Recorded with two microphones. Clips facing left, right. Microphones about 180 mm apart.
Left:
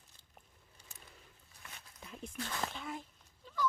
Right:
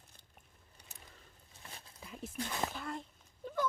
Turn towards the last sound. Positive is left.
turn(degrees=-50)  # may be behind; listen again after turning